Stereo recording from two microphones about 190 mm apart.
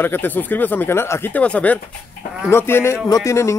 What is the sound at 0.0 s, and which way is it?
Speech, 10° left (ahead or behind).